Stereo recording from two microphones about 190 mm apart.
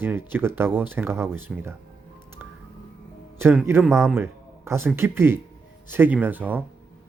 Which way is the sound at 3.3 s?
10° right (ahead or behind).